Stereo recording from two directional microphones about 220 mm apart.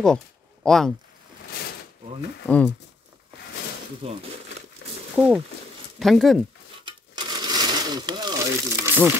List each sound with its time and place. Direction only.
0.7 s speech: centre (ahead or behind)
2.4 s speech: 5° left (ahead or behind)
4.0 s speech: 25° right (ahead or behind)
4.8 s a sound: 50° left (ahead or behind)
5.1 s speech: 5° right (ahead or behind)
6.8 s a sound: 20° right (ahead or behind)